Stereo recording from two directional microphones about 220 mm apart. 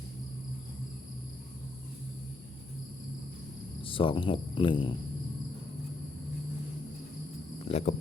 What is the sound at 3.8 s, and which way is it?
Speech, 25° left (ahead or behind).